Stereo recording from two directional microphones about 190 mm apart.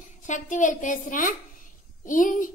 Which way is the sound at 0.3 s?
40° left (ahead or behind).